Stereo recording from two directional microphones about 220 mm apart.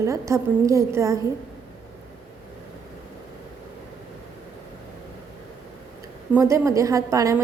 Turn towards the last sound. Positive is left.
turn(degrees=-15)  # may be behind; listen again after turning